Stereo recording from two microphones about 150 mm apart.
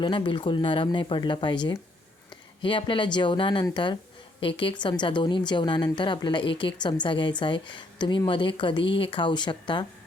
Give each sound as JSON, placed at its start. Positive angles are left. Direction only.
{"t": 0.0, "sound": "a woman's voice", "side_deg": 35}